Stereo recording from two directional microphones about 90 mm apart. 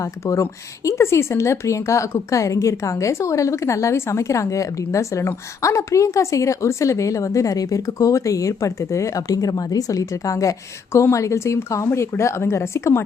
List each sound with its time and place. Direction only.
0.0 s a woman's voice: 35° left (ahead or behind)